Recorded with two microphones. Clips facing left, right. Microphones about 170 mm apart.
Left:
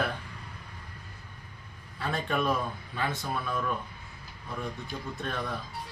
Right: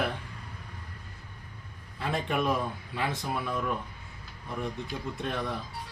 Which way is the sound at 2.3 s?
15° right (ahead or behind).